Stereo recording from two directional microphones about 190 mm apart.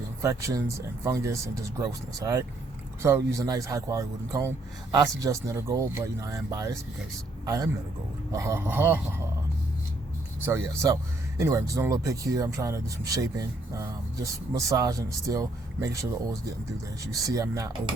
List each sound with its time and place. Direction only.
0.2 s a man's voice: 15° right (ahead or behind)
10.4 s speech: 15° right (ahead or behind)